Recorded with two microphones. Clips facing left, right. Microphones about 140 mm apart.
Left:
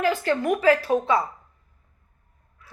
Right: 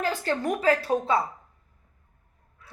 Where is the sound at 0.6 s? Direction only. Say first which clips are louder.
Left 3 dB; 35° right (ahead or behind).